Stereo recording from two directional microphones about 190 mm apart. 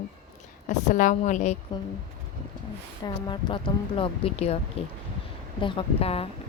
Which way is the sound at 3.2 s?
25° left (ahead or behind).